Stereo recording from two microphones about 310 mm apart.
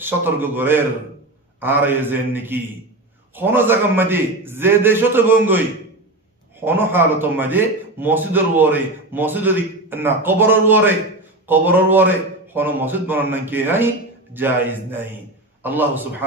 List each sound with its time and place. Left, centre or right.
0.0 s a man's voice: centre
6.6 s a man's voice: centre